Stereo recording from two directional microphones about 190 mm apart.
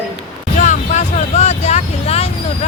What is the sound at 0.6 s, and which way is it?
Speech, 40° left (ahead or behind).